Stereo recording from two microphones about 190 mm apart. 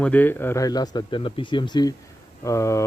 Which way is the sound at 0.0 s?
10° left (ahead or behind).